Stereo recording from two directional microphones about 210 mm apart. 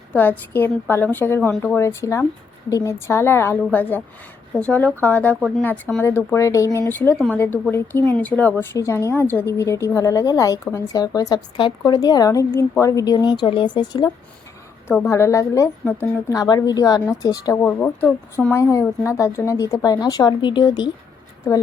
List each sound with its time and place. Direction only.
0.1 s a woman's voice: 10° left (ahead or behind)